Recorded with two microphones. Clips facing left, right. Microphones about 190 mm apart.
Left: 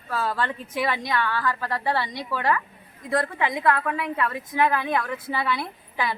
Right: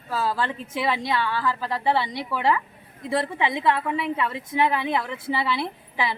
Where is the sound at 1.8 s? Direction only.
25° right (ahead or behind).